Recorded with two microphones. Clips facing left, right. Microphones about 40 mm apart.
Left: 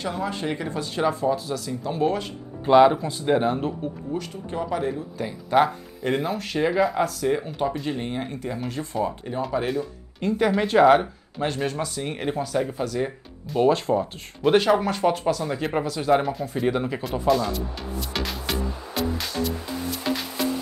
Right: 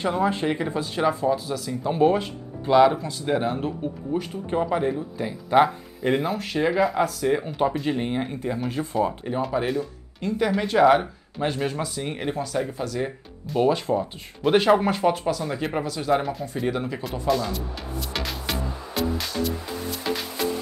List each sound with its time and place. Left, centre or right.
0.0 s speech: right; by 1.8 s centre
1.8 s speech: centre
2.6 s speech: centre
4.1 s speech: centre
10.2 s speech: centre
15.0 s speech: centre
18.1 s music: centre